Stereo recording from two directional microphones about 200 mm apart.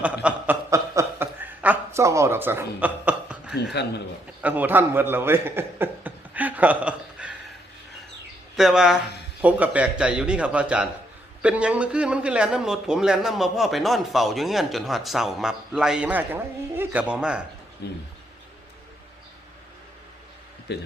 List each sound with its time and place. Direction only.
0.0 s chuckle: 5° right (ahead or behind)
3.5 s speech: 55° left (ahead or behind)
4.4 s a man's voice: 10° right (ahead or behind)
8.5 s a man's voice: centre (ahead or behind)
17.8 s speech: 55° left (ahead or behind)
20.7 s speech: 60° left (ahead or behind)